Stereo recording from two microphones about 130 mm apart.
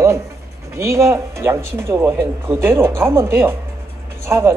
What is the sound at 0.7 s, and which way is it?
Speech, 20° right (ahead or behind).